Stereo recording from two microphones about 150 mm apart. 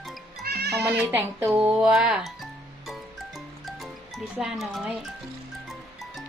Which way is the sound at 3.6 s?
Centre (ahead or behind).